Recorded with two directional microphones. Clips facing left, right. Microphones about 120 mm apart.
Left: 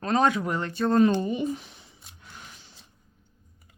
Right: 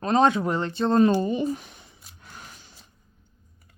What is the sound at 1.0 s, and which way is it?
Speech, 35° right (ahead or behind).